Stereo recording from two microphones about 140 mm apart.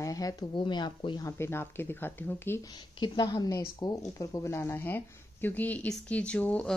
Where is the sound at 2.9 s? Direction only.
30° left (ahead or behind).